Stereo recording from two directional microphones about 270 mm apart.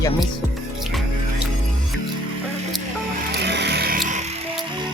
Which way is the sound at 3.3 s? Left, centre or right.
Right.